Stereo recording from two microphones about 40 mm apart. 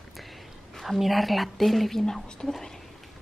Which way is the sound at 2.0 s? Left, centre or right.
Centre.